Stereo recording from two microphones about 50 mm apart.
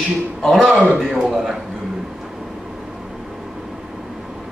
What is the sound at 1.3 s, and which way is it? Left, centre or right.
Speech, centre.